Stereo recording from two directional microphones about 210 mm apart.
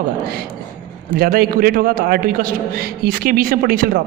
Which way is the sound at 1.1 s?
45° right (ahead or behind).